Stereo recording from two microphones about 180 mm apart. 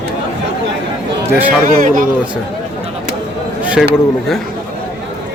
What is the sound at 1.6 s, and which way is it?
Speech, 45° right (ahead or behind).